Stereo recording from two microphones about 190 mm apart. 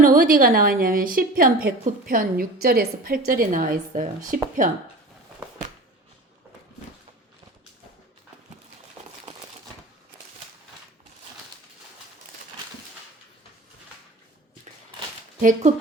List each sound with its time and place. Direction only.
0.0 s a woman's voice: 50° right (ahead or behind)
15.4 s a woman's voice: 40° right (ahead or behind)